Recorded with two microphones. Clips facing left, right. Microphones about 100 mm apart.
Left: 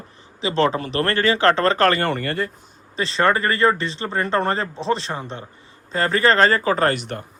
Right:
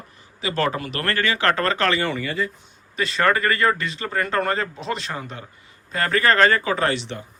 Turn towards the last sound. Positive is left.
turn(degrees=50)  # may be behind; listen again after turning